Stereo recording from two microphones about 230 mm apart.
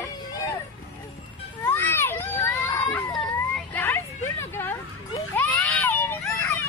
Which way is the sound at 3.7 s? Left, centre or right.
Centre.